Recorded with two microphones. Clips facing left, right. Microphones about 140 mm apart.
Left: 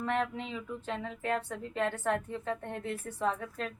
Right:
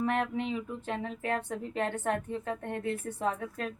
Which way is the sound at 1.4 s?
55° right (ahead or behind).